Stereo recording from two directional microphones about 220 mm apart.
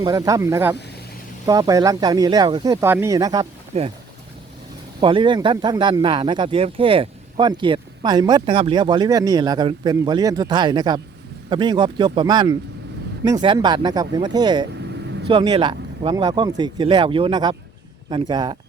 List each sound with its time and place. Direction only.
0.0 s speech: 15° right (ahead or behind)
4.9 s speech: 20° right (ahead or behind)
14.8 s vehicle: 50° right (ahead or behind)
15.3 s speech: 25° right (ahead or behind)